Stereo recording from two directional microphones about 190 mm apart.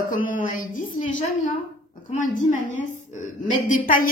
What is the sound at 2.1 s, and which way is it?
A woman's voice, 45° left (ahead or behind).